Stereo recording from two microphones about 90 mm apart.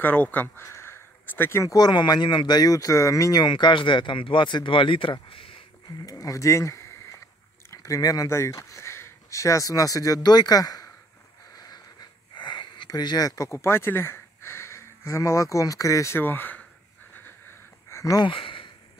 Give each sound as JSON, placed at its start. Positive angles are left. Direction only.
{"t": 0.0, "sound": "speech", "side_deg": 20}
{"t": 1.6, "sound": "speech", "side_deg": 45}
{"t": 6.0, "sound": "speech", "side_deg": 40}
{"t": 11.5, "sound": "a sound", "side_deg": 45}
{"t": 17.8, "sound": "a sound", "side_deg": 35}
{"t": 18.2, "sound": "speech", "side_deg": 75}